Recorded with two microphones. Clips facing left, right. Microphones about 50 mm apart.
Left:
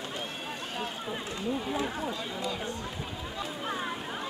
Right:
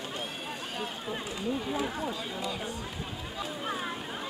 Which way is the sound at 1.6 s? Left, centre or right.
Centre.